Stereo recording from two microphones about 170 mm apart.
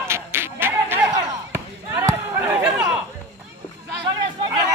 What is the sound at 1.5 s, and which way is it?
Basketball bounce, 15° right (ahead or behind).